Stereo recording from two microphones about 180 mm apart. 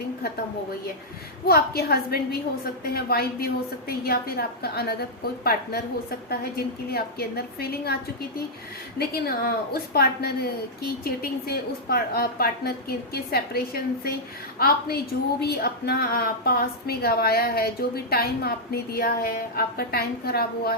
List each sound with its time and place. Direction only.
1.5 s a woman's voice: 60° left (ahead or behind)
9.0 s a woman's voice: 55° left (ahead or behind)
15.4 s a woman's voice: 60° left (ahead or behind)